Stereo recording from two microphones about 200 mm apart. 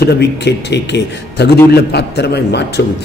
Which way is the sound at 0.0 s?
55° left (ahead or behind).